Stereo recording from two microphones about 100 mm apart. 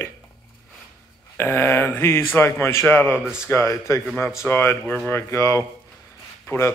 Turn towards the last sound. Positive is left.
turn(degrees=30)  # may be behind; listen again after turning